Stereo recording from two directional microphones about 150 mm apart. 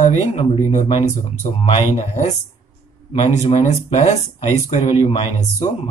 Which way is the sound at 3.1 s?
50° left (ahead or behind).